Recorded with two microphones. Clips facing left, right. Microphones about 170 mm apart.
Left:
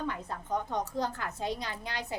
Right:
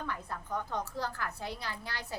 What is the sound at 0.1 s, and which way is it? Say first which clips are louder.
A woman's voice: left 3 dB; 20° left (ahead or behind).